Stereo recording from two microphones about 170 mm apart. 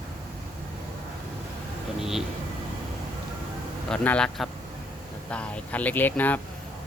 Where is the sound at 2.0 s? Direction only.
5° right (ahead or behind).